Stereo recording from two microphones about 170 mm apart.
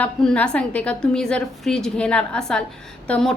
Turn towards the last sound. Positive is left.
turn(degrees=5)  # may be behind; listen again after turning